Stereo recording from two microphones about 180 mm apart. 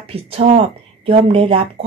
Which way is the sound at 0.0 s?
30° right (ahead or behind).